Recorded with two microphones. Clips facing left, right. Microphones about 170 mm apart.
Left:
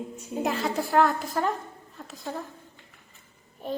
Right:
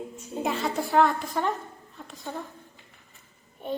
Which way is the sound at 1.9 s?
Centre (ahead or behind).